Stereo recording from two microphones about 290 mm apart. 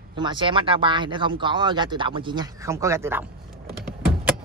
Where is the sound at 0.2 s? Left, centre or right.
Centre.